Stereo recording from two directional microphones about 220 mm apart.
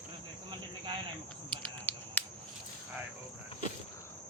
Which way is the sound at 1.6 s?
10° left (ahead or behind).